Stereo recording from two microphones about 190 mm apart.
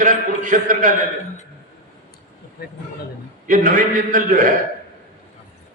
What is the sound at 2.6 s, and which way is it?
Speech, 55° left (ahead or behind).